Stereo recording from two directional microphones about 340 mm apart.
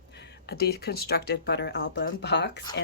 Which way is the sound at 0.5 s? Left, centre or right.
Left.